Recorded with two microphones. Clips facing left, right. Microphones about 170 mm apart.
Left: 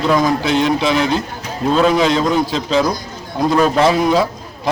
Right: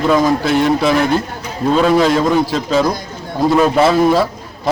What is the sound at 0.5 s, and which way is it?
Speech, 20° left (ahead or behind).